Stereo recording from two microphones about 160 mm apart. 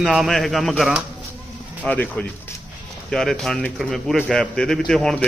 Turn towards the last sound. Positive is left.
turn(degrees=5)  # may be behind; listen again after turning